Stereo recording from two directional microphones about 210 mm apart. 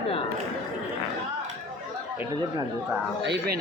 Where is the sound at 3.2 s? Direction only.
50° right (ahead or behind).